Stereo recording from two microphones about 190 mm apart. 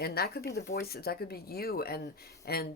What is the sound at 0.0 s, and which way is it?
Speech, 55° left (ahead or behind).